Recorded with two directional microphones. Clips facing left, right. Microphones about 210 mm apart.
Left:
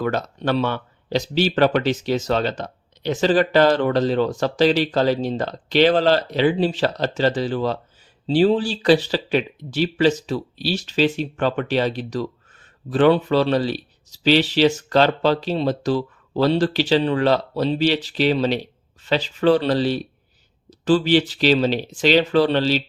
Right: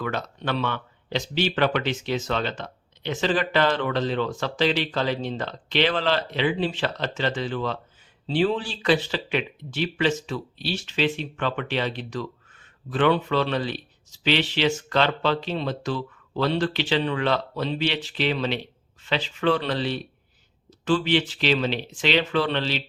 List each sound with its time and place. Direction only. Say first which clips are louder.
0.0 s speech: left 6 dB; 40° left (ahead or behind)